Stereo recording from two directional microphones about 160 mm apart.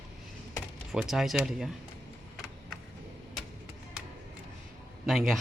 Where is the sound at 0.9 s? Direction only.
Centre (ahead or behind).